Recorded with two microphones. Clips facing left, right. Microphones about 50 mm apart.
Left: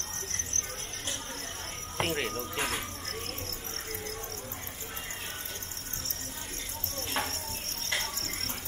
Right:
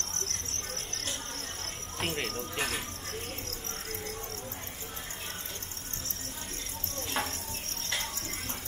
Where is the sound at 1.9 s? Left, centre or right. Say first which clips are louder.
Left 3 dB; centre.